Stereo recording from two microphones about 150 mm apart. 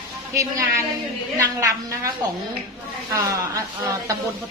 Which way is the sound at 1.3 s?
20° right (ahead or behind).